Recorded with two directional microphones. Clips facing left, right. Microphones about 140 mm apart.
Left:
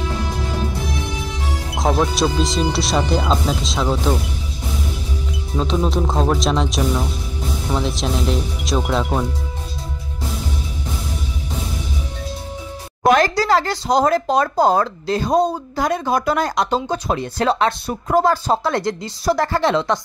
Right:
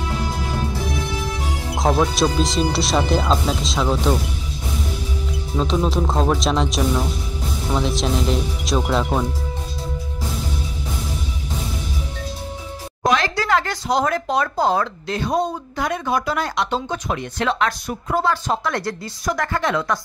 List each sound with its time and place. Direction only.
1.8 s speech: centre (ahead or behind)
5.6 s speech: centre (ahead or behind)
13.1 s speech: 40° left (ahead or behind); by 20.0 s 25° left (ahead or behind)